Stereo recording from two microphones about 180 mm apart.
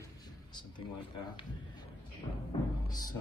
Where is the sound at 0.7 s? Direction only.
25° left (ahead or behind).